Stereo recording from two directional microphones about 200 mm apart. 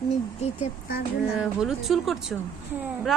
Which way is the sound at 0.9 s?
50° left (ahead or behind).